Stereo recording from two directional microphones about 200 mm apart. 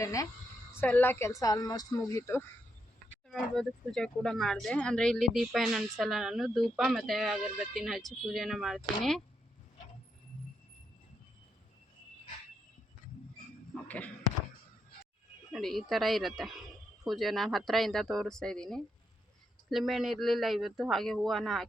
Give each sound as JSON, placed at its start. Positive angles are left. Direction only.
{"t": 0.0, "sound": "speech", "side_deg": 15}
{"t": 3.2, "sound": "speech", "side_deg": 0}
{"t": 13.8, "sound": "speech", "side_deg": 5}
{"t": 15.5, "sound": "speech", "side_deg": 0}